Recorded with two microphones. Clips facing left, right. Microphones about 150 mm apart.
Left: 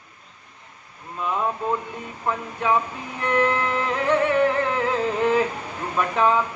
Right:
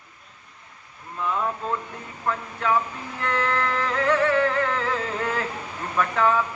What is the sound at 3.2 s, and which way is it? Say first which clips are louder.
Music: left 4 dB; 20° left (ahead or behind).